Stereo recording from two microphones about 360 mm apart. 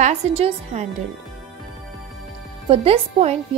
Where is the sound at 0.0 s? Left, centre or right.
Centre.